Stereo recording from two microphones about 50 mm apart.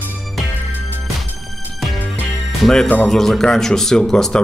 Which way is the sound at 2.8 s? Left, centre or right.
Left.